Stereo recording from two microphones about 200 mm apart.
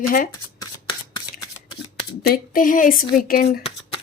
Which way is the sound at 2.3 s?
45° left (ahead or behind).